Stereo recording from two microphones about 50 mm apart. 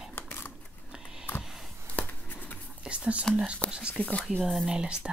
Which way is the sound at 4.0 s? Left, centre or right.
Left.